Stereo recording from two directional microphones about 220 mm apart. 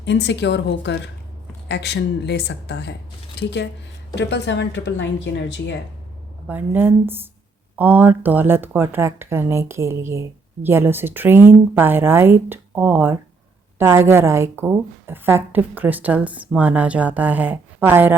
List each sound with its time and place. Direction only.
0.0 s a woman's voice: 50° left (ahead or behind)
4.1 s a woman's voice: 55° left (ahead or behind)
6.5 s speech: 10° right (ahead or behind)